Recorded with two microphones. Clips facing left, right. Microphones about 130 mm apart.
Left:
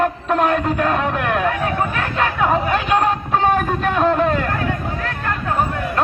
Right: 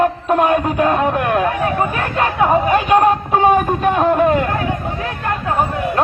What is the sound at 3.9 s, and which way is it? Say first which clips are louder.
Speech: right 1 dB; 15° right (ahead or behind).